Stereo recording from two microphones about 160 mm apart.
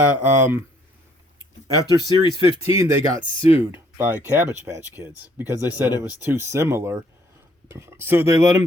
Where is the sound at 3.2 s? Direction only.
35° left (ahead or behind).